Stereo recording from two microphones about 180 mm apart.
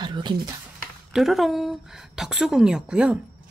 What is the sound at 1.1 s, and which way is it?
A woman's voice, centre (ahead or behind).